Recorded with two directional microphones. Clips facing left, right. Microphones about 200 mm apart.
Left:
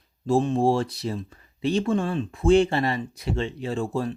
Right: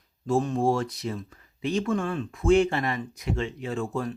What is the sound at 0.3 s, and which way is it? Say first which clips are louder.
Speech: left 3 dB; 30° left (ahead or behind).